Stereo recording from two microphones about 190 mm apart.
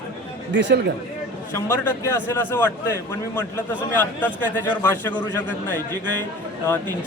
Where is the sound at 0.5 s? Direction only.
65° right (ahead or behind).